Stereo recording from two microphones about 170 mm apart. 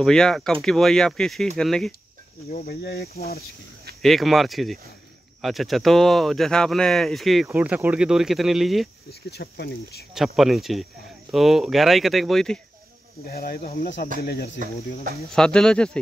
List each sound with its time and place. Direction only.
0.0 s speech: 5° left (ahead or behind)
2.5 s speech: 65° left (ahead or behind)
4.0 s speech: centre (ahead or behind)
9.3 s speech: 75° left (ahead or behind)
10.1 s speech: centre (ahead or behind)
13.3 s speech: 65° left (ahead or behind)
15.3 s speech: 5° left (ahead or behind)